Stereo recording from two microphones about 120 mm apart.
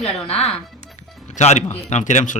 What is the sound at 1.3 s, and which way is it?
Speech, 70° left (ahead or behind).